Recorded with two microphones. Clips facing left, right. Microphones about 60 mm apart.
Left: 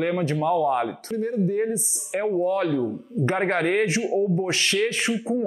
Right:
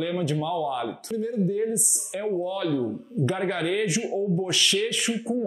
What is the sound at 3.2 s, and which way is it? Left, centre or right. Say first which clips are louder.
Speech: left 4 dB; left.